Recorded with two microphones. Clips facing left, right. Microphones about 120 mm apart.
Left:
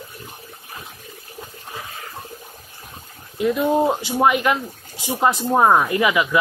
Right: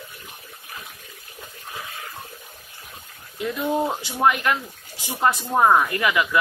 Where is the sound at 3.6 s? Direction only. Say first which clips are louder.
Left 4 dB; 30° left (ahead or behind).